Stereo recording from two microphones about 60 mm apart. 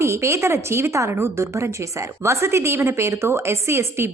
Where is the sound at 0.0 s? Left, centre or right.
Right.